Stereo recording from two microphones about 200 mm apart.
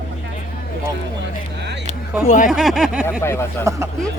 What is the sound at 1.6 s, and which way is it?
Vehicle, 60° right (ahead or behind).